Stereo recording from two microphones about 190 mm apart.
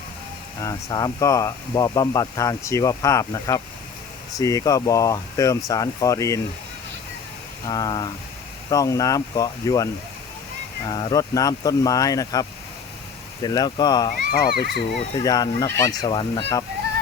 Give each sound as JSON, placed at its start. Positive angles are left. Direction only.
{"t": 0.6, "sound": "speech", "side_deg": 20}
{"t": 7.7, "sound": "speech", "side_deg": 20}
{"t": 14.3, "sound": "a child's voice", "side_deg": 55}
{"t": 15.2, "sound": "speech", "side_deg": 20}